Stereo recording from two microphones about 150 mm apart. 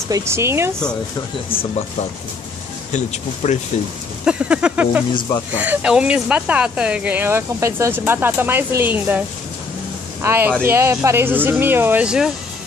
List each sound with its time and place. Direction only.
0.1 s speech: 20° right (ahead or behind)
2.9 s speech: 50° left (ahead or behind)
4.2 s speech: 5° right (ahead or behind)
10.2 s speech: 15° right (ahead or behind)